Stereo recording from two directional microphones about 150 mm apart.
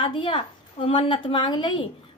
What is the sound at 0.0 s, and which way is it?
A woman's voice, 35° left (ahead or behind).